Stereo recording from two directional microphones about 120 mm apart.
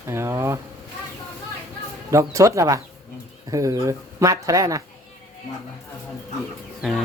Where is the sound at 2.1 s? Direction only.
25° right (ahead or behind).